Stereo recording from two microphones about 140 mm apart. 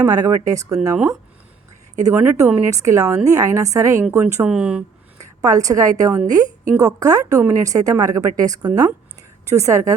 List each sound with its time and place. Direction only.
0.0 s a woman's voice: 25° right (ahead or behind)
2.0 s a woman's voice: 20° right (ahead or behind)
4.4 s speech: 5° right (ahead or behind)
5.4 s a woman's voice: 25° right (ahead or behind)